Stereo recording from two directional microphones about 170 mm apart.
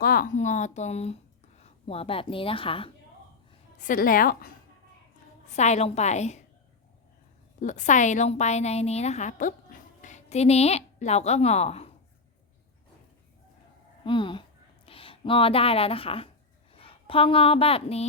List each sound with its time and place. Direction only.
0.0 s a woman's voice: 60° left (ahead or behind); by 2.9 s 30° left (ahead or behind)
3.8 s a woman's voice: 55° left (ahead or behind)
5.5 s a woman's voice: 40° left (ahead or behind)
7.6 s a woman's voice: 45° left (ahead or behind)
14.0 s a woman's voice: 30° left (ahead or behind)